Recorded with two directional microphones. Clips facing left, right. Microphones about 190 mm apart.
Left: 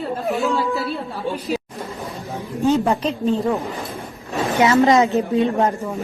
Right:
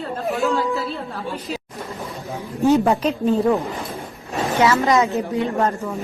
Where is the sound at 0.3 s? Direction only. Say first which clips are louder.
Even; centre (ahead or behind).